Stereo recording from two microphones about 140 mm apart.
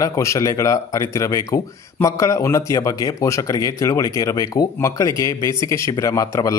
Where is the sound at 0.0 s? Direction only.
20° left (ahead or behind).